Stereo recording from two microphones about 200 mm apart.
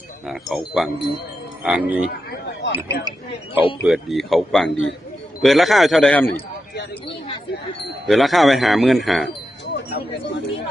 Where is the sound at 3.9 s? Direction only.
Centre (ahead or behind).